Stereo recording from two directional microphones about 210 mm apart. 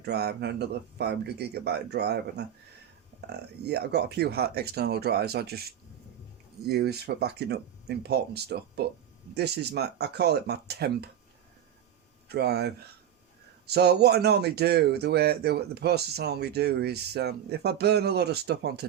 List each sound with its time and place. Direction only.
0.0 s speech: 50° right (ahead or behind)
3.6 s speech: 50° right (ahead or behind)
6.7 s speech: 50° right (ahead or behind)
12.3 s speech: 50° right (ahead or behind)